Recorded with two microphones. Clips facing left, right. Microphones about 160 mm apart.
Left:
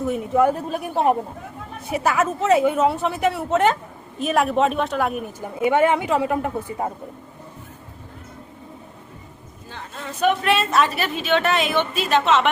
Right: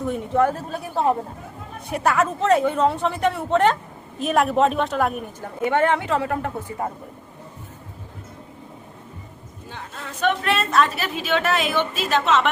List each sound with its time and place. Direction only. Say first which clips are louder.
0.0 s a woman's voice: left 2 dB; 5° left (ahead or behind)
0.5 s speech: left 2 dB; 20° left (ahead or behind)
1.9 s a woman's voice: even; centre (ahead or behind)
5.4 s speech: left 2 dB; 10° left (ahead or behind)
10.2 s a woman's voice: left 2 dB; 5° left (ahead or behind)